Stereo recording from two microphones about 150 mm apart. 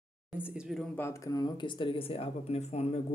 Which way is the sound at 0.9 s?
20° left (ahead or behind).